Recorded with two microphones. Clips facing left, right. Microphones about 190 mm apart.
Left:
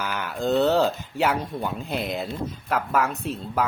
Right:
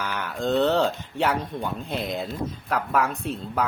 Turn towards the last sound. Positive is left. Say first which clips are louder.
# left 1 dB
turn(degrees=0)  # may be behind; listen again after turning